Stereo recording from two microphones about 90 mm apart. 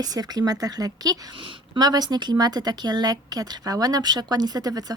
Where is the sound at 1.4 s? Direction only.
70° right (ahead or behind).